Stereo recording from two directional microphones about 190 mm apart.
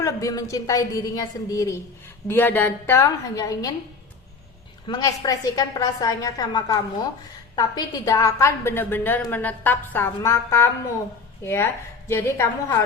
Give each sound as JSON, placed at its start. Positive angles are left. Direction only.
{"t": 0.0, "sound": "a woman's voice", "side_deg": 15}
{"t": 4.9, "sound": "a woman's voice", "side_deg": 20}